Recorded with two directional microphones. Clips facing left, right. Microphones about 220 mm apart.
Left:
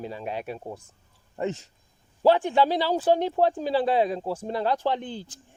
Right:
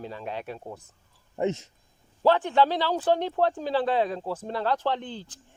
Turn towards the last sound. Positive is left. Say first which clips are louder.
# left 2 dB
turn(degrees=10)  # may be behind; listen again after turning